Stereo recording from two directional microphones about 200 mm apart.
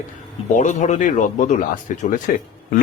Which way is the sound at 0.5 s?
35° left (ahead or behind).